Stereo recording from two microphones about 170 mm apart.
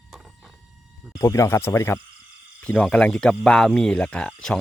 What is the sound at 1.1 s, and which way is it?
Speech, 20° left (ahead or behind).